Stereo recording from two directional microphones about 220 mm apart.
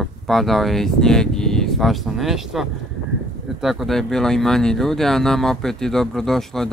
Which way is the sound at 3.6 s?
Centre (ahead or behind).